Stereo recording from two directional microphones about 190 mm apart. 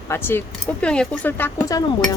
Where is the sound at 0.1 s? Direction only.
10° left (ahead or behind).